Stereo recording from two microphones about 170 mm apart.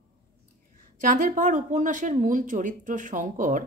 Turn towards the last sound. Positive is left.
turn(degrees=-50)  # may be behind; listen again after turning